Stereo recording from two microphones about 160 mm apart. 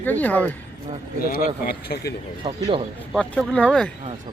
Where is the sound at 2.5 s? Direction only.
30° right (ahead or behind).